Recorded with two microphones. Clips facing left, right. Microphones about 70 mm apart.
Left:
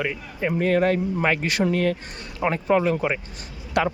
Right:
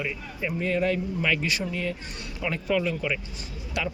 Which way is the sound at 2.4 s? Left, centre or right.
Left.